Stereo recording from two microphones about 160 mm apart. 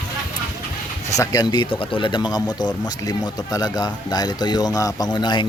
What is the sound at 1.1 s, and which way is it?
Speech, 25° left (ahead or behind).